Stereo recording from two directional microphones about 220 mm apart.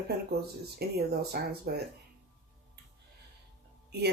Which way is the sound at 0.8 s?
45° right (ahead or behind).